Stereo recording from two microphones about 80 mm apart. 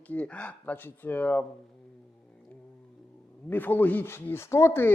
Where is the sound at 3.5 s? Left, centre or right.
Left.